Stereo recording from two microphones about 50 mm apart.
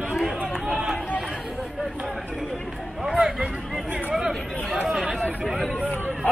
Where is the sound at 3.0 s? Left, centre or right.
Centre.